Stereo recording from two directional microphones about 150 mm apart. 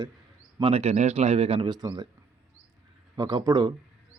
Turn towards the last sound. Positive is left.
turn(degrees=-25)  # may be behind; listen again after turning